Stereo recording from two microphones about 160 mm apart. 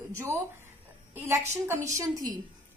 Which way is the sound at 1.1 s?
15° right (ahead or behind).